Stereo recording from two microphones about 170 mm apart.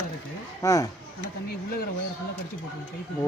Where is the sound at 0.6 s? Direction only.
20° left (ahead or behind).